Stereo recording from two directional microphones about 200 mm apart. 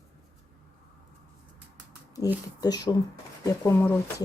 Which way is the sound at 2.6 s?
20° left (ahead or behind).